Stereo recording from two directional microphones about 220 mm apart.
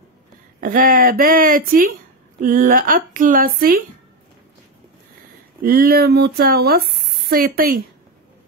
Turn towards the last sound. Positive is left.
turn(degrees=-45)  # may be behind; listen again after turning